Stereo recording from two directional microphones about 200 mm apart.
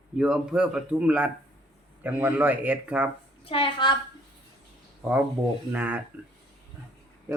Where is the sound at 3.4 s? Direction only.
25° left (ahead or behind).